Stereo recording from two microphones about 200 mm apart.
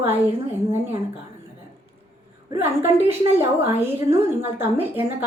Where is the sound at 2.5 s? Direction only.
10° right (ahead or behind).